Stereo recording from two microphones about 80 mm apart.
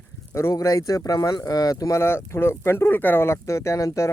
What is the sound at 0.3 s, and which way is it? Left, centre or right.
Speech, left.